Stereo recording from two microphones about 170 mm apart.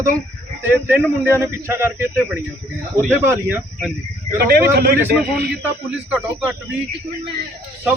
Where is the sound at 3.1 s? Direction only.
15° right (ahead or behind).